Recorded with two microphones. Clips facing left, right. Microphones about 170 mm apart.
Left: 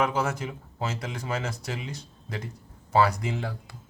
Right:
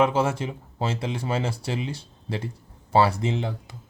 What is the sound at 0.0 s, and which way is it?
Speech, 25° right (ahead or behind).